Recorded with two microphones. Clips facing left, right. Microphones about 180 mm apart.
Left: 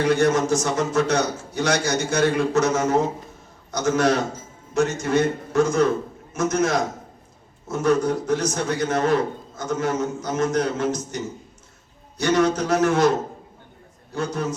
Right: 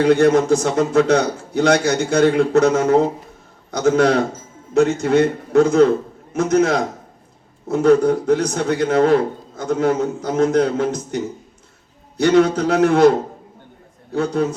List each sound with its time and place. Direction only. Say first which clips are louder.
0.0 s a man's voice: right 6 dB; 60° right (ahead or behind)